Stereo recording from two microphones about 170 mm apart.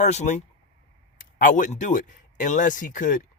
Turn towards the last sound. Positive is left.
turn(degrees=50)  # may be behind; listen again after turning